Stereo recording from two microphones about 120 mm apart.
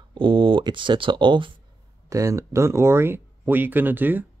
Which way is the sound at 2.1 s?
25° right (ahead or behind).